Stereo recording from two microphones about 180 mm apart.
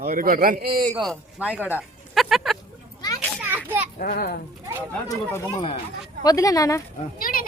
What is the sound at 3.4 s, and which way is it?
Children playing, 10° right (ahead or behind).